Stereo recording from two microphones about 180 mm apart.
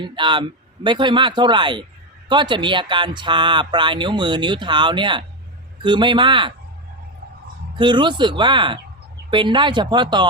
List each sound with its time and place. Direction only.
0.2 s speech: 25° right (ahead or behind)
7.8 s speech: 25° right (ahead or behind)